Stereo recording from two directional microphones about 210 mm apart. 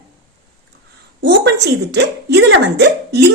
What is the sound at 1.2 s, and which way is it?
Speech, 55° right (ahead or behind).